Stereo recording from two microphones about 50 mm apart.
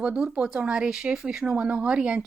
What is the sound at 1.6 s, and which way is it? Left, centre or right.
Speech, right.